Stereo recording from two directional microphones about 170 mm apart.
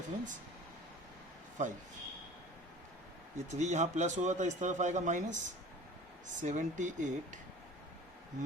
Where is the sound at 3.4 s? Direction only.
45° right (ahead or behind).